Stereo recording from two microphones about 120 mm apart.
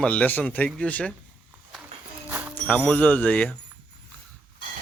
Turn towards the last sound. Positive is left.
turn(degrees=10)  # may be behind; listen again after turning